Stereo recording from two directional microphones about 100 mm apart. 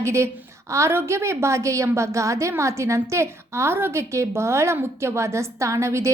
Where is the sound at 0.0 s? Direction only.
30° right (ahead or behind).